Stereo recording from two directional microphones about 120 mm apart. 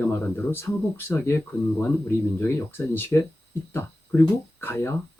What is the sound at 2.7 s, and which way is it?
Speech, 20° left (ahead or behind).